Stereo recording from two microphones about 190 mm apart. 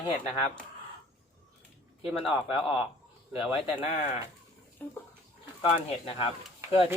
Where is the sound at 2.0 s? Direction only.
5° right (ahead or behind).